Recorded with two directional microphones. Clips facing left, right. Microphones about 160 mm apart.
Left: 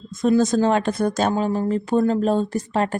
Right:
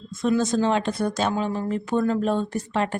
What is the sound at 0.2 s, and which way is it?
Speech, 40° left (ahead or behind).